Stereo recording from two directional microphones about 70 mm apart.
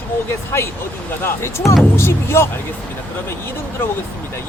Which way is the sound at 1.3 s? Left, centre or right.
Left.